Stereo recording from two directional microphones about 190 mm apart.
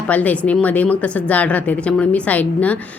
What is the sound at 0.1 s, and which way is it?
A woman's voice, 5° left (ahead or behind).